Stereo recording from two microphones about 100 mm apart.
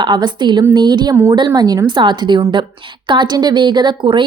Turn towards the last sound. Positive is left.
turn(degrees=-55)  # may be behind; listen again after turning